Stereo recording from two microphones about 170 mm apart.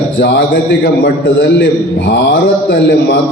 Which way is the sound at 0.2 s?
90° left.